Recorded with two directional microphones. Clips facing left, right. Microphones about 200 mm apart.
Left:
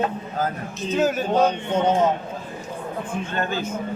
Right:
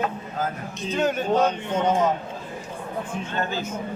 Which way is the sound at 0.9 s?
5° left (ahead or behind).